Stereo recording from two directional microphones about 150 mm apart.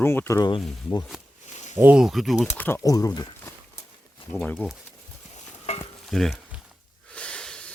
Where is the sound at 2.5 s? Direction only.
15° left (ahead or behind).